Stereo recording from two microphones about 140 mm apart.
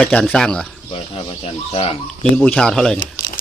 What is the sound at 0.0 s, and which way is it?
Speech, 5° left (ahead or behind).